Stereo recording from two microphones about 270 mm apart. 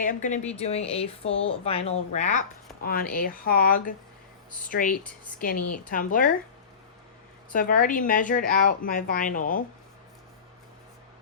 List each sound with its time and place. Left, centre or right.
0.0 s speech: left
7.5 s speech: left